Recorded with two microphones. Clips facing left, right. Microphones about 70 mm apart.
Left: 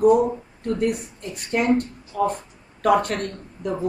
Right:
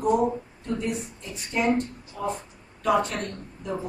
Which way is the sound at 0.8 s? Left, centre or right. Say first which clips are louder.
Left 6 dB; left.